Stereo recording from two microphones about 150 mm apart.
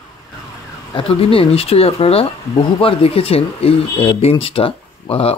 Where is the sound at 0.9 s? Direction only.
40° left (ahead or behind).